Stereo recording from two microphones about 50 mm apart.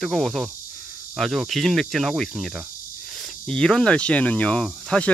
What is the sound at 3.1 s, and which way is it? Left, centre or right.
Cricket, centre.